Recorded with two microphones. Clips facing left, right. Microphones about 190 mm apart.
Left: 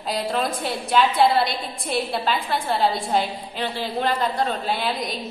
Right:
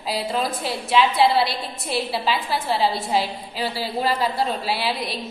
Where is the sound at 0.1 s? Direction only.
Centre (ahead or behind).